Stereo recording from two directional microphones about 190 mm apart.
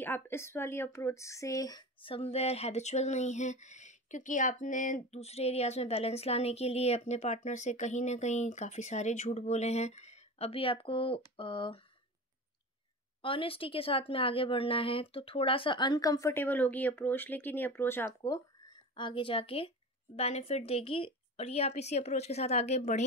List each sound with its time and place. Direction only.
0.0 s speech: 10° left (ahead or behind)
13.2 s a woman's voice: 30° left (ahead or behind)
18.9 s a woman's voice: 25° left (ahead or behind)